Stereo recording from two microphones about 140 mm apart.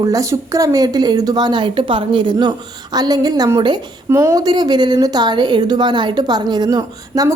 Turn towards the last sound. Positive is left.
turn(degrees=-25)  # may be behind; listen again after turning